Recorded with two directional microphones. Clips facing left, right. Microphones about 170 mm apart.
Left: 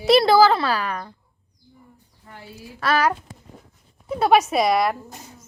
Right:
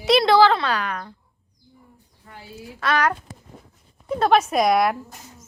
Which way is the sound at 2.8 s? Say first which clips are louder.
Left 1 dB; 5° left (ahead or behind).